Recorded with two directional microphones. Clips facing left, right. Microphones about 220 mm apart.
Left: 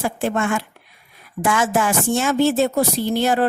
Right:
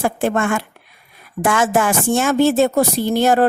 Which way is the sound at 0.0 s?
50° right (ahead or behind).